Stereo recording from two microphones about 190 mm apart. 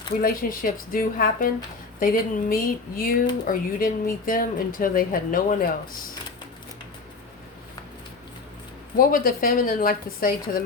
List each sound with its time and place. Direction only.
0.2 s a woman's voice: 45° left (ahead or behind)
9.0 s a woman's voice: 50° left (ahead or behind)